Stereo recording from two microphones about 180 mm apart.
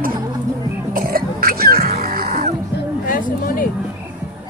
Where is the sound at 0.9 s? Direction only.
55° right (ahead or behind).